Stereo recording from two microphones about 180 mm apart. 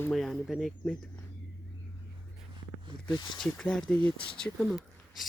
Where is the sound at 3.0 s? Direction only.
25° left (ahead or behind).